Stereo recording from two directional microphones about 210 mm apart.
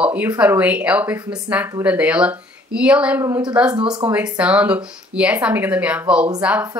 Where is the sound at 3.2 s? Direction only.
15° right (ahead or behind).